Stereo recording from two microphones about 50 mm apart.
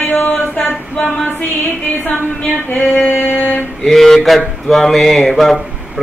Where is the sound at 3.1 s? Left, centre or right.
Left.